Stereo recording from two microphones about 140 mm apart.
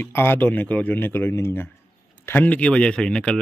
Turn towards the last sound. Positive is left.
turn(degrees=5)  # may be behind; listen again after turning